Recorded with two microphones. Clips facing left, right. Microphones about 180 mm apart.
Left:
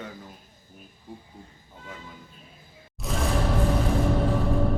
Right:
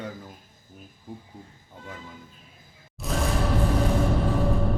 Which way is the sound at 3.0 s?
Centre (ahead or behind).